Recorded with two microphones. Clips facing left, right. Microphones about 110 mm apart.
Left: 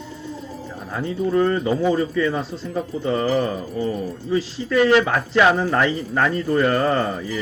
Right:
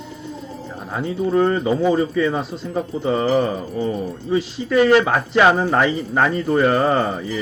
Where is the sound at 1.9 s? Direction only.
20° right (ahead or behind).